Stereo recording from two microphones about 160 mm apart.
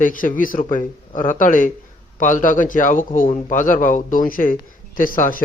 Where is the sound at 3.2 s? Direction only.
50° left (ahead or behind).